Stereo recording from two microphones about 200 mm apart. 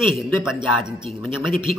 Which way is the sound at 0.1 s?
Centre (ahead or behind).